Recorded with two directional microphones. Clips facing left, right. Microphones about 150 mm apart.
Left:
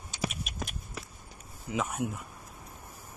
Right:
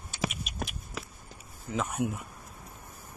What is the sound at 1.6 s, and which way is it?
Speech, 5° left (ahead or behind).